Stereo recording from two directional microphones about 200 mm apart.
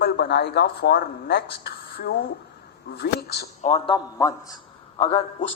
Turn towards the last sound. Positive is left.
turn(degrees=30)  # may be behind; listen again after turning